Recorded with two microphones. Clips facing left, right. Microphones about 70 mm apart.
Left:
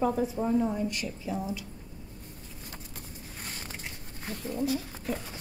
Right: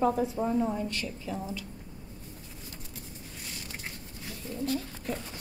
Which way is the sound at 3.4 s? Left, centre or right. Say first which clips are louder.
Left 3 dB; left.